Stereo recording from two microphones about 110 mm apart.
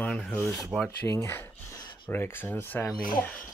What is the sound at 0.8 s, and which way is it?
Speech, 25° left (ahead or behind).